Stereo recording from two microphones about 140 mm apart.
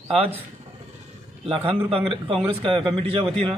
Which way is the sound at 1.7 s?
40° right (ahead or behind).